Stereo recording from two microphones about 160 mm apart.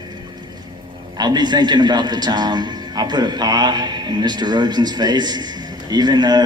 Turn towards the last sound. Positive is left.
turn(degrees=-25)  # may be behind; listen again after turning